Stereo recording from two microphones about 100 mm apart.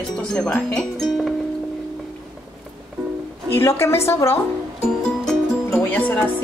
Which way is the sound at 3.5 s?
25° left (ahead or behind).